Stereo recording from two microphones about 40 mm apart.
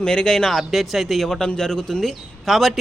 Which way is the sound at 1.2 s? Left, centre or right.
Centre.